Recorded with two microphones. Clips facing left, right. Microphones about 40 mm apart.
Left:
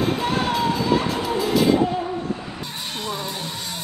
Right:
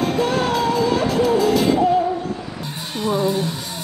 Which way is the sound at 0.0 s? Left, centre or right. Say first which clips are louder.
Right 3 dB; centre.